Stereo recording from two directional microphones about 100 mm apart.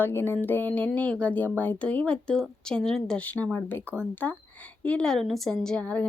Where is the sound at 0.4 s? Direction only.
20° left (ahead or behind).